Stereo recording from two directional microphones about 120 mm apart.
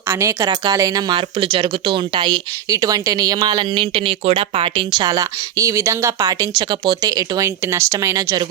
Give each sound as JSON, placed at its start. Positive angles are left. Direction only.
{"t": 0.1, "sound": "speech", "side_deg": -25}